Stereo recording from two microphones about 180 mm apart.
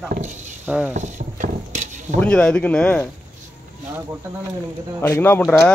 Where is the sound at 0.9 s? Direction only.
40° right (ahead or behind).